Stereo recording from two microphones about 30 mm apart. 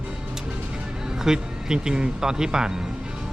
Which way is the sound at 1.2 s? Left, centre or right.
Right.